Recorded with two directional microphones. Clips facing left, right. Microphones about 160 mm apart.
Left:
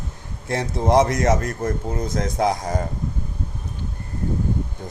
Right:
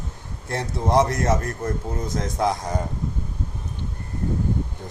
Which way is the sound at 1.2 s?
80° left.